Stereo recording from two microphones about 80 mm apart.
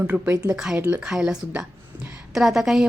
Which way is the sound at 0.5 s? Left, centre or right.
Centre.